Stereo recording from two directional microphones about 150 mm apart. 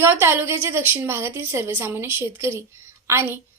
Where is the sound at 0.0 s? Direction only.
15° right (ahead or behind).